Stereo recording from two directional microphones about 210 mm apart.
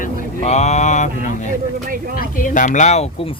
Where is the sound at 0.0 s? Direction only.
30° left (ahead or behind).